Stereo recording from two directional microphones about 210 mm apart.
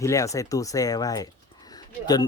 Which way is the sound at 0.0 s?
15° left (ahead or behind).